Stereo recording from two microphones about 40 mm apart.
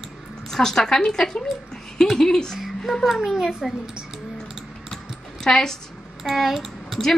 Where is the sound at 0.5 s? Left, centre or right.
Centre.